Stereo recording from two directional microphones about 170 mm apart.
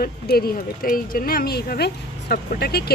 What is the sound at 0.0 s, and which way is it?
Speech, 65° left (ahead or behind).